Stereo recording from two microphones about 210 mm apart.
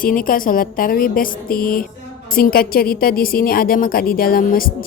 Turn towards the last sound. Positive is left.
turn(degrees=45)  # may be behind; listen again after turning